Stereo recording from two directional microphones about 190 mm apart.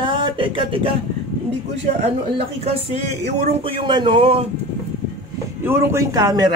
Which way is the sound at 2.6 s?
30° right (ahead or behind).